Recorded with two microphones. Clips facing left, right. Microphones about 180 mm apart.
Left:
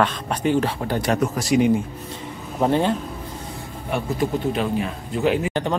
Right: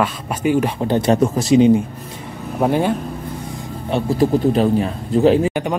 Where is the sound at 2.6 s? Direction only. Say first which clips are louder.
Right 2 dB; 10° right (ahead or behind).